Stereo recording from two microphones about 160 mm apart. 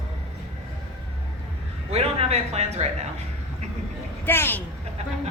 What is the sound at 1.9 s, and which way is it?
A man's voice, 40° right (ahead or behind).